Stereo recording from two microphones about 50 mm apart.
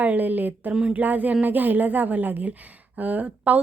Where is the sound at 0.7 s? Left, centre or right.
Centre.